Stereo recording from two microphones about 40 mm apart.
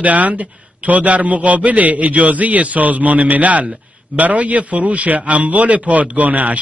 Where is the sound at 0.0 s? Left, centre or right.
Right.